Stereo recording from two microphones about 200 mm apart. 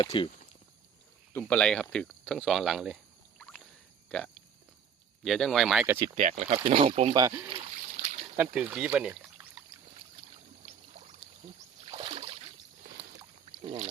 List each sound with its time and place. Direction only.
0.0 s speech: 25° left (ahead or behind)
1.3 s speech: 10° left (ahead or behind)
5.2 s speech: centre (ahead or behind)
6.0 s speech: 35° right (ahead or behind); by 7.5 s 15° right (ahead or behind)
7.9 s a sound: 35° right (ahead or behind)
8.5 s speech: 5° right (ahead or behind)
11.9 s rowboat: 30° right (ahead or behind)
13.6 s rowboat: 30° right (ahead or behind)